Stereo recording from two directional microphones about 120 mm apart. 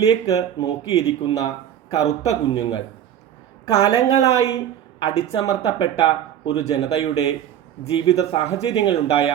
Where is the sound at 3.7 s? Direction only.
30° left (ahead or behind).